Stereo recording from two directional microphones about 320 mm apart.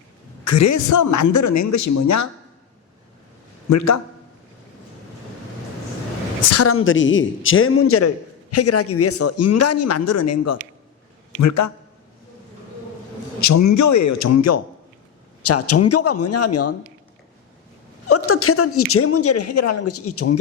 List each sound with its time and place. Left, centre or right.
0.4 s speech: left
3.7 s speech: left
6.4 s a man's voice: left
13.4 s a man's voice: left
18.1 s a man's voice: left